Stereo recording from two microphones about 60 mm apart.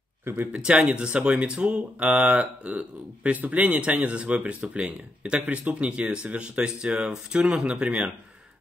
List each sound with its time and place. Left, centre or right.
0.2 s speech: right
0.5 s speech: centre